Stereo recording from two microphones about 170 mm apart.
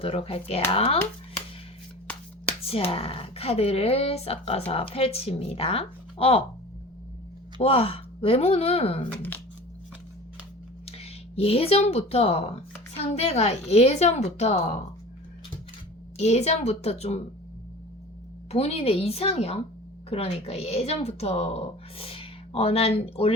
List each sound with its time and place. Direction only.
0.0 s speech: 35° left (ahead or behind)
2.6 s speech: 35° left (ahead or behind)
7.6 s speech: 35° left (ahead or behind)
10.8 s speech: 35° left (ahead or behind)
16.1 s speech: 40° left (ahead or behind)
18.5 s speech: 35° left (ahead or behind)